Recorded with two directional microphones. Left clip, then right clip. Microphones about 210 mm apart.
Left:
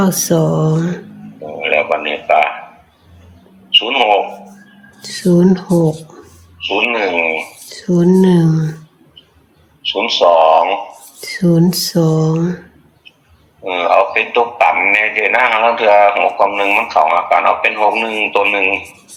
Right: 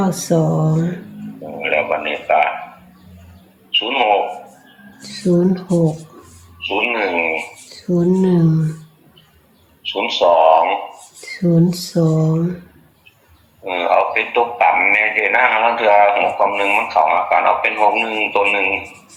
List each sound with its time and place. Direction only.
0.0 s speech: 50° left (ahead or behind)
1.5 s a sound: 45° left (ahead or behind)
3.7 s a sound: 45° left (ahead or behind)
5.0 s speech: 50° left (ahead or behind)
6.9 s speech: 45° left (ahead or behind)
9.9 s speech: 40° left (ahead or behind)
13.7 s speech: 40° left (ahead or behind)